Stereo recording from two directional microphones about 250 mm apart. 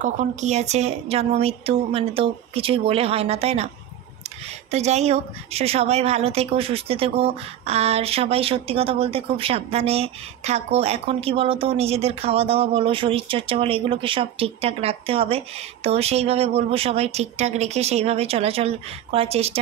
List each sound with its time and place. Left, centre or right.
0.0 s a woman's voice: right